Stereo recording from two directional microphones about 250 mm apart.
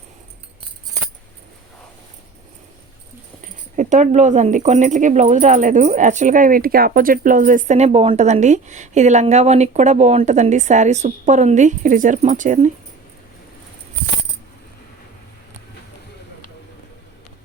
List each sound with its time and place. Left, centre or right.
3.4 s speech: right